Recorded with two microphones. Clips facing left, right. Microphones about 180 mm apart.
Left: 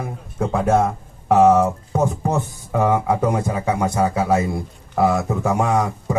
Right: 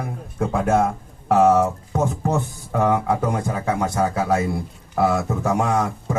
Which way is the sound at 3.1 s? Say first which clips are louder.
Left 2 dB; 15° left (ahead or behind).